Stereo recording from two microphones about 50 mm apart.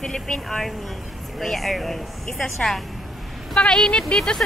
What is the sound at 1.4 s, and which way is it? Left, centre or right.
A woman's voice, centre.